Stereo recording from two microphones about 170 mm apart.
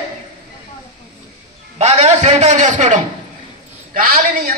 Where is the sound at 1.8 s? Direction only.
40° right (ahead or behind).